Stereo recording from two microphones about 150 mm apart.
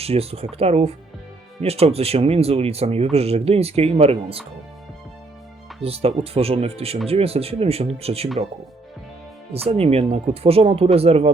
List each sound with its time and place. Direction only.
0.0 s speech: 40° right (ahead or behind)
5.8 s speech: 40° right (ahead or behind)
9.5 s speech: 40° right (ahead or behind)